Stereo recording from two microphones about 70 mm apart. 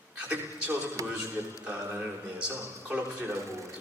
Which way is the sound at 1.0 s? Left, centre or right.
Right.